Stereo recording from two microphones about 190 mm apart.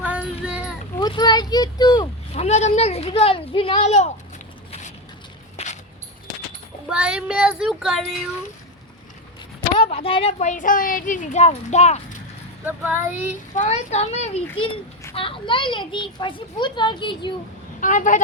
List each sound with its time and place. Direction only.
0.0 s child singing: 5° right (ahead or behind)
0.9 s a child's voice: 25° left (ahead or behind)
2.3 s speech: 35° left (ahead or behind)
5.6 s a sound: 35° left (ahead or behind)
6.8 s speech: 5° right (ahead or behind)
9.7 s speech: 30° left (ahead or behind)
12.6 s speech: 10° right (ahead or behind)
13.5 s a child's voice: 35° left (ahead or behind)
17.7 s speech: 45° left (ahead or behind)